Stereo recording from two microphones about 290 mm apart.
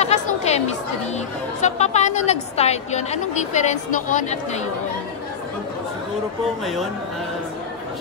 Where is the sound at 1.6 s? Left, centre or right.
Left.